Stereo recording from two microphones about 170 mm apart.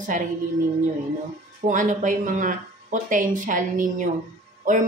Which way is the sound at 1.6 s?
50° right (ahead or behind).